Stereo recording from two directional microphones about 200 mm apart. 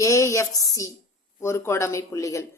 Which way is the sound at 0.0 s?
15° left (ahead or behind).